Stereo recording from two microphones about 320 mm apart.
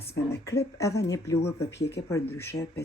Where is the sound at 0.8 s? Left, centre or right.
Centre.